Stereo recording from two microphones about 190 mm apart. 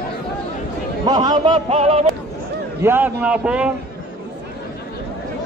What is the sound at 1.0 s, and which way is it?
A man's voice, 20° right (ahead or behind).